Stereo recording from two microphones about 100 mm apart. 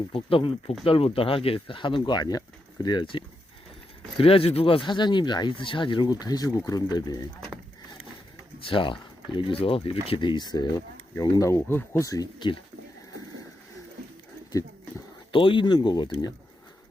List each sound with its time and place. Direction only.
0.1 s speech: 65° left (ahead or behind)
4.2 s speech: 70° left (ahead or behind); by 7.3 s 40° left (ahead or behind)
8.6 s speech: 55° left (ahead or behind)
11.1 s speech: 35° left (ahead or behind)
15.3 s speech: 60° left (ahead or behind)